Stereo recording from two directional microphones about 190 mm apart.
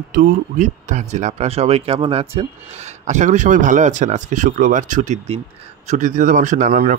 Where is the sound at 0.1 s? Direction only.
40° right (ahead or behind).